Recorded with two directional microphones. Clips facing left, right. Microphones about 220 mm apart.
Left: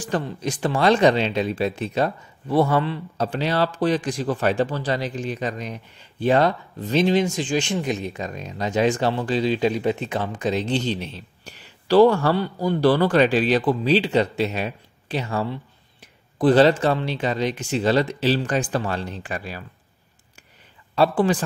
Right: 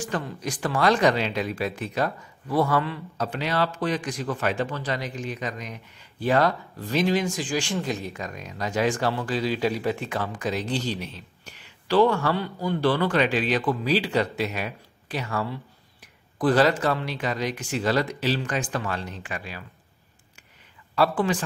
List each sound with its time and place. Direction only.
0.0 s speech: 30° left (ahead or behind)
20.9 s speech: 30° left (ahead or behind)